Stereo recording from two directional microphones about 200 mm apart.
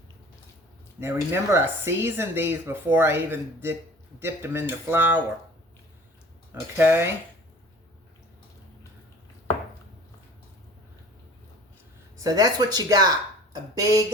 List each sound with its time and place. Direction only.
0.9 s speech: 10° right (ahead or behind)
6.5 s speech: 10° right (ahead or behind)
12.1 s speech: 20° right (ahead or behind)